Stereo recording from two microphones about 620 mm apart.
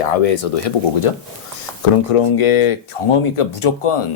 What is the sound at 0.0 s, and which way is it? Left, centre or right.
Speech, left.